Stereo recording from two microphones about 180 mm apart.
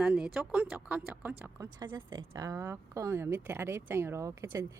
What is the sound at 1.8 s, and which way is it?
A woman's voice, 25° right (ahead or behind).